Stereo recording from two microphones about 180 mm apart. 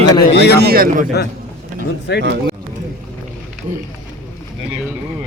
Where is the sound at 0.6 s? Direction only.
55° right (ahead or behind).